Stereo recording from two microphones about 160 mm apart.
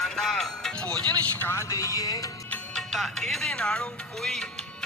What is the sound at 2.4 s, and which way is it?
Speech, 10° left (ahead or behind).